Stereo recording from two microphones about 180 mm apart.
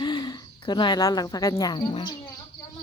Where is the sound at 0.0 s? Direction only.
25° left (ahead or behind).